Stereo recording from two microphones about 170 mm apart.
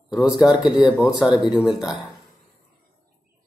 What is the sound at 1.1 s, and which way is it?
Speech, 25° left (ahead or behind).